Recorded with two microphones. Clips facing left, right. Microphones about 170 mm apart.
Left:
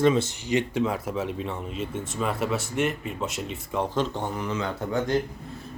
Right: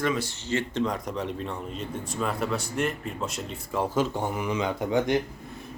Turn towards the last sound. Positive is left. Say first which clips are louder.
# right 1 dB
turn(degrees=-15)  # may be behind; listen again after turning